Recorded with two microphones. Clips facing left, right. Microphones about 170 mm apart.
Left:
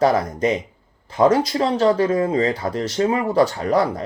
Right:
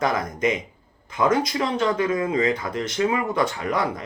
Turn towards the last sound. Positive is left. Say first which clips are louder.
# left 6 dB
turn(degrees=35)  # may be behind; listen again after turning